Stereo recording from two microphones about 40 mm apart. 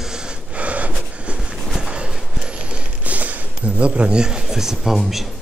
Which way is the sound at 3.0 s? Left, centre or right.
Right.